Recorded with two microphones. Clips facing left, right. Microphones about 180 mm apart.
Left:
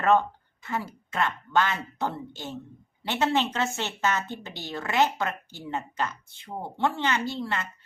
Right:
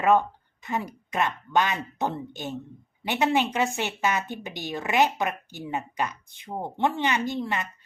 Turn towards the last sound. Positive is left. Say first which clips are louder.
# right 2 dB
turn(degrees=-15)  # may be behind; listen again after turning